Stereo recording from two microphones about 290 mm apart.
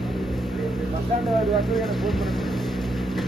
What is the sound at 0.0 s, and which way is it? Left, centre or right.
Vehicle, centre.